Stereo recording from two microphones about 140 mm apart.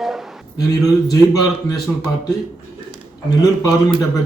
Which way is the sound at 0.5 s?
25° left (ahead or behind).